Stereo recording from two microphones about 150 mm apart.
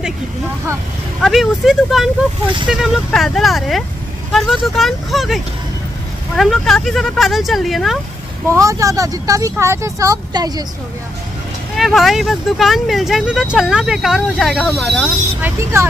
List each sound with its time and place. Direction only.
1.2 s speech: centre (ahead or behind)
8.5 s speech: 20° right (ahead or behind)
11.7 s speech: centre (ahead or behind)
15.4 s speech: 20° right (ahead or behind)